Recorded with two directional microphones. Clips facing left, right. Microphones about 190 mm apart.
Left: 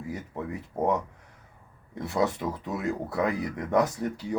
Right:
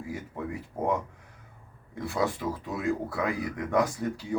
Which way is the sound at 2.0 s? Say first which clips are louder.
Left 2 dB; 20° left (ahead or behind).